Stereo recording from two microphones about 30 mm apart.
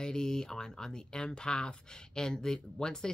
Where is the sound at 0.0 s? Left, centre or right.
Left.